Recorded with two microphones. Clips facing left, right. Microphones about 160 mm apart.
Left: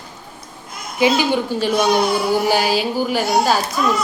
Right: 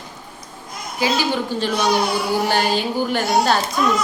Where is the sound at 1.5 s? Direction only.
10° left (ahead or behind).